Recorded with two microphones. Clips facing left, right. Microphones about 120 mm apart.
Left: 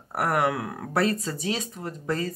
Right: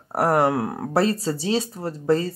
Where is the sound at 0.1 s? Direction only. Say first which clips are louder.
Right 5 dB; 30° right (ahead or behind).